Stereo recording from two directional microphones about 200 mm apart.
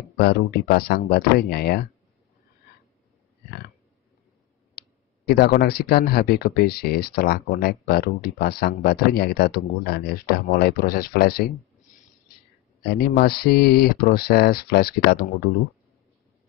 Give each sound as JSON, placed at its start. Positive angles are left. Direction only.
{"t": 0.2, "sound": "speech", "side_deg": 50}
{"t": 5.3, "sound": "speech", "side_deg": 50}
{"t": 12.8, "sound": "speech", "side_deg": 50}